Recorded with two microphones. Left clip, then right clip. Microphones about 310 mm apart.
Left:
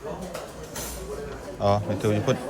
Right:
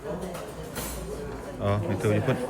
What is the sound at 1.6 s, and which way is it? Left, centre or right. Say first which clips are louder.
Speech: left 4 dB; centre.